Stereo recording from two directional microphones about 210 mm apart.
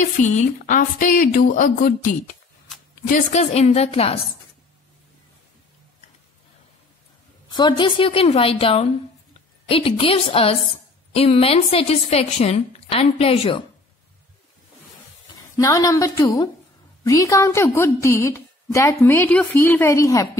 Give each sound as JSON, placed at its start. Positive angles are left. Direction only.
{"t": 0.0, "sound": "speech", "side_deg": 35}
{"t": 7.4, "sound": "a woman's voice", "side_deg": 20}
{"t": 15.3, "sound": "a woman's voice", "side_deg": 15}